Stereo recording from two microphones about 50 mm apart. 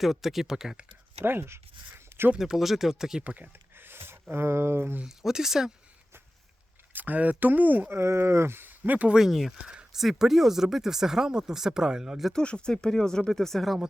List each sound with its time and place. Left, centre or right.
0.0 s speech: centre
1.2 s speech: right
1.9 s a sound: right
2.4 s speech: centre
3.2 s speech: right
3.8 s a sound: right
5.0 s speech: centre
6.9 s speech: right
7.9 s speech: right
8.8 s speech: right
9.1 s speech: centre
9.6 s speech: centre
12.3 s speech: centre